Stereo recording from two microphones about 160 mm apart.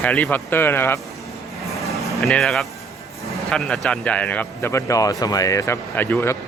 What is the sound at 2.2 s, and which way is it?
A man's voice, centre (ahead or behind).